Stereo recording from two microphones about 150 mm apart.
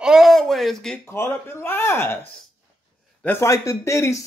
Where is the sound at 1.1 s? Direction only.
20° left (ahead or behind).